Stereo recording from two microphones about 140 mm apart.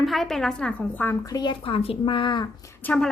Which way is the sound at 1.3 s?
35° left (ahead or behind).